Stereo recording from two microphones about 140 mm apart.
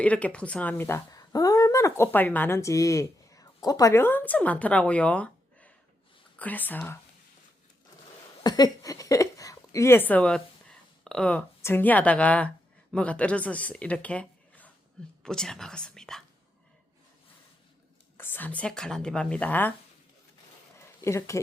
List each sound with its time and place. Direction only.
0.0 s speech: 10° left (ahead or behind)
8.4 s speech: 30° left (ahead or behind); by 16.2 s 5° left (ahead or behind)
18.2 s speech: 15° left (ahead or behind)
20.8 s a sound: 20° left (ahead or behind)